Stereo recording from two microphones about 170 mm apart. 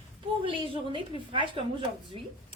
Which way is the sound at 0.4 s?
30° right (ahead or behind).